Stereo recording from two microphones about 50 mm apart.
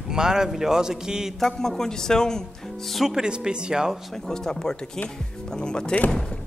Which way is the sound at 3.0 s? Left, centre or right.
Centre.